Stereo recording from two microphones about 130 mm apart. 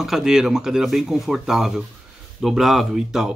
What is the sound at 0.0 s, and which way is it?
Speech, 5° right (ahead or behind).